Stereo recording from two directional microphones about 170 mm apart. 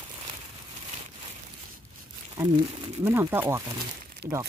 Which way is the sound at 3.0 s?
15° right (ahead or behind).